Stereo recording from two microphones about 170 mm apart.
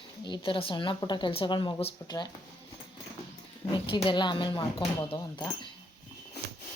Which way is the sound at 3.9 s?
25° left (ahead or behind).